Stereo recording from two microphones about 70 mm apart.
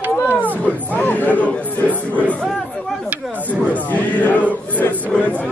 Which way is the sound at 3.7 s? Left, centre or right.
Left.